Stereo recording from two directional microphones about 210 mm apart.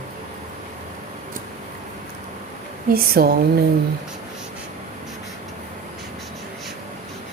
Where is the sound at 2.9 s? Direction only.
45° right (ahead or behind).